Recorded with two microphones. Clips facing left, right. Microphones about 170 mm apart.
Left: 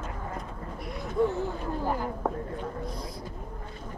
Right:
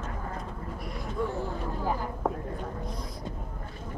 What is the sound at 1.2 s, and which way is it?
Speech, 25° left (ahead or behind).